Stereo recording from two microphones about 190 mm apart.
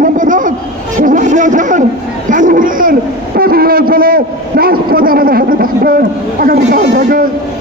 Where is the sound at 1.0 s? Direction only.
45° right (ahead or behind).